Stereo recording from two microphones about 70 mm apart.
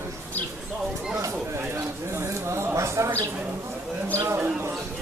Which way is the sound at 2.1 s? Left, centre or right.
Right.